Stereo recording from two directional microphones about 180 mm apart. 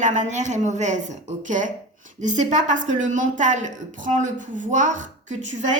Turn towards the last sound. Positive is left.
turn(degrees=-40)  # may be behind; listen again after turning